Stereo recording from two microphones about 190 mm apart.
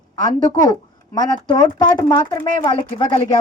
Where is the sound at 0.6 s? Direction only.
20° left (ahead or behind).